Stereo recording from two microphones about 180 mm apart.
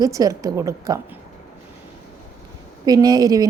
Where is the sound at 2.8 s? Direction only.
20° right (ahead or behind).